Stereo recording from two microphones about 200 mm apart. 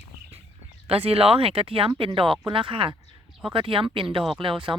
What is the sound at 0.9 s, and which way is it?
Speech, 30° right (ahead or behind).